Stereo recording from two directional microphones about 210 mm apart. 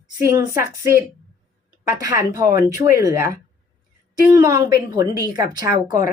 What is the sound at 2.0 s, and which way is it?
Speech, 15° right (ahead or behind).